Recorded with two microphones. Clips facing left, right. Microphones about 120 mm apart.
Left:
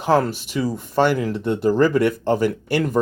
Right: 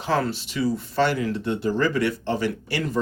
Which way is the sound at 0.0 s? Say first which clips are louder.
Left 6 dB; 50° left (ahead or behind).